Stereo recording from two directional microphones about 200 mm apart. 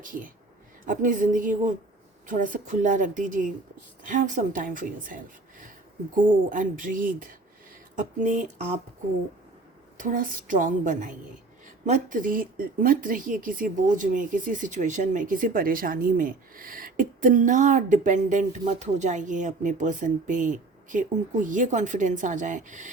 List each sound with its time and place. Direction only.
0.0 s speech: 40° right (ahead or behind)
6.5 s speech: 40° right (ahead or behind)
10.0 s speech: 45° right (ahead or behind)